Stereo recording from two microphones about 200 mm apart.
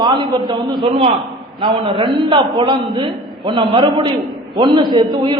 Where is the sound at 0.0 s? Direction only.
20° right (ahead or behind).